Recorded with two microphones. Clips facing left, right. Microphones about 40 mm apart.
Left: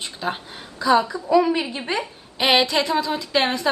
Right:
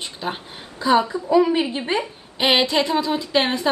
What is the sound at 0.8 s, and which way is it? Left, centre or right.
Speech, right.